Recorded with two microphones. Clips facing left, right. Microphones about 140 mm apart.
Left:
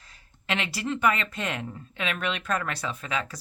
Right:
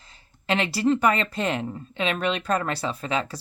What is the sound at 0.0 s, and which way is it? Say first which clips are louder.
Speech: right 5 dB; 30° right (ahead or behind).